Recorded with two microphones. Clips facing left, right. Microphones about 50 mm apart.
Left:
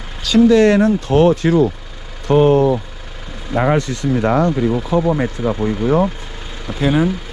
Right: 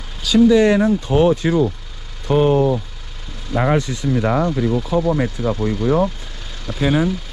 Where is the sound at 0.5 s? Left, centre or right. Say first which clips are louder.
Left 3 dB; left.